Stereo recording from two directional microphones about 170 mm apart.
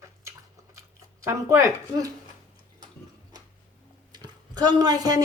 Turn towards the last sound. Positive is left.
turn(degrees=-20)  # may be behind; listen again after turning